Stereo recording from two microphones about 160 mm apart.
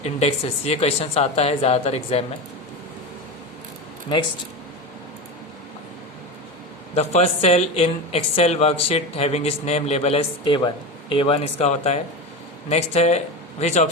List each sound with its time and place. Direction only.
0.0 s speech: 40° left (ahead or behind)
6.9 s speech: 40° left (ahead or behind)